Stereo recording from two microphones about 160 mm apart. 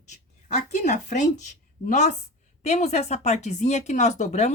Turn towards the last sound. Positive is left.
turn(degrees=45)  # may be behind; listen again after turning